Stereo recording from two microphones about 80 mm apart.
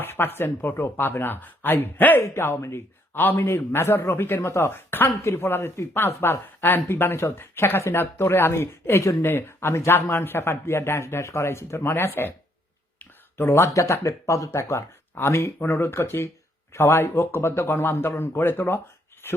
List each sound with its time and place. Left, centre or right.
0.0 s speech: left
3.2 s speech: left
13.3 s speech: left